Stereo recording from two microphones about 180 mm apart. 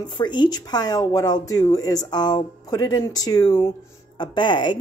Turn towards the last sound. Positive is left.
turn(degrees=25)  # may be behind; listen again after turning